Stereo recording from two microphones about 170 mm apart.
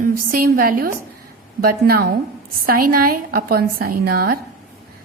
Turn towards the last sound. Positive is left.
turn(degrees=-65)  # may be behind; listen again after turning